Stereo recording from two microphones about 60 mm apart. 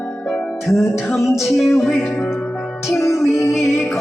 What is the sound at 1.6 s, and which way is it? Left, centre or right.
Music, centre.